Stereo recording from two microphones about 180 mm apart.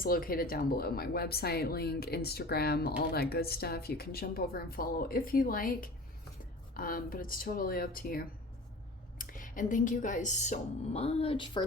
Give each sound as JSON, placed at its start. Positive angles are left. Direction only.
{"t": 0.0, "sound": "speech", "side_deg": 55}